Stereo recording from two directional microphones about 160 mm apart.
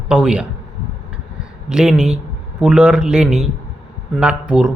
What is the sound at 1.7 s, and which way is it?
Speech, 5° right (ahead or behind).